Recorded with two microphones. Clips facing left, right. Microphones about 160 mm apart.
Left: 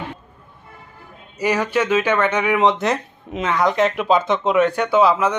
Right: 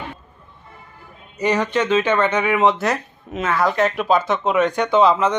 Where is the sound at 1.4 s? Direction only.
5° left (ahead or behind).